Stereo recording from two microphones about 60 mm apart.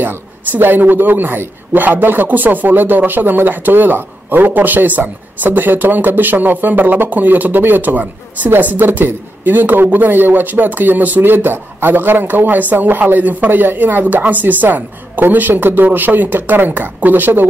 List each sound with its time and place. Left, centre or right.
0.0 s a woman's voice: right